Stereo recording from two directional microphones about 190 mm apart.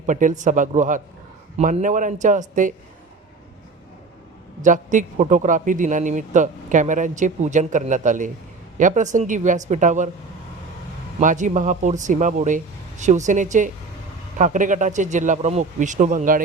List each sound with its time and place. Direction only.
0.0 s a man's voice: 40° right (ahead or behind)
4.6 s a man's voice: 40° right (ahead or behind)
11.2 s a man's voice: 40° right (ahead or behind)